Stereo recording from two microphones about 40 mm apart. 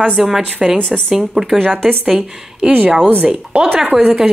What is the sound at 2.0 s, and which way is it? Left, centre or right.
Speech, centre.